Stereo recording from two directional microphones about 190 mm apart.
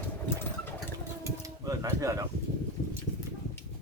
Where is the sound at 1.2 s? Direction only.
15° right (ahead or behind).